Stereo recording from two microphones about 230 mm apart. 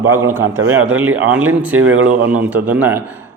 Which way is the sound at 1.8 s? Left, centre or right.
Right.